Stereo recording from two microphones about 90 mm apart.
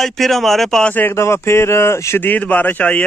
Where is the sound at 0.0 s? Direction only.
Centre (ahead or behind).